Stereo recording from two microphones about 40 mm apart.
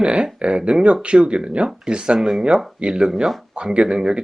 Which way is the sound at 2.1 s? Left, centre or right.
Centre.